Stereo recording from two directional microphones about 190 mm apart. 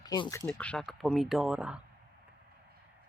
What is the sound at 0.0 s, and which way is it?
Speech, 20° left (ahead or behind).